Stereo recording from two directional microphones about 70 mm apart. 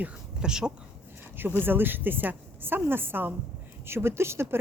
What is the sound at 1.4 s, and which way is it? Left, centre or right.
Speech, right.